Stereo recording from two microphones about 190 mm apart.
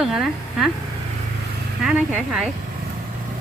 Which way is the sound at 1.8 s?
5° right (ahead or behind).